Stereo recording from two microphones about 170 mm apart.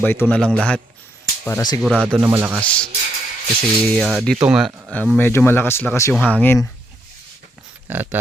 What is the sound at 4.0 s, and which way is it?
Speech, centre (ahead or behind).